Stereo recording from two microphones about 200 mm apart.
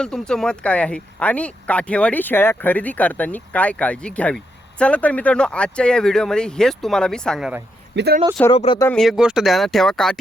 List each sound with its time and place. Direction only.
0.0 s speech: 5° left (ahead or behind)
7.9 s speech: 55° right (ahead or behind)
8.4 s speech: 25° left (ahead or behind)
8.8 s speech: 5° left (ahead or behind)